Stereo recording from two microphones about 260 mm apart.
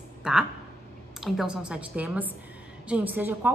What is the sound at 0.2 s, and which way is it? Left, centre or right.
A woman's voice, centre.